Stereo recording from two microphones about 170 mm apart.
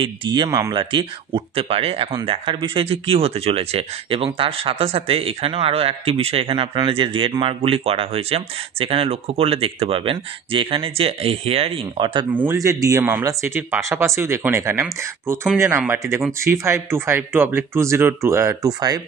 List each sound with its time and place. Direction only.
0.0 s speech: 30° right (ahead or behind)
1.3 s speech: 35° right (ahead or behind)
12.4 s speech: 15° right (ahead or behind)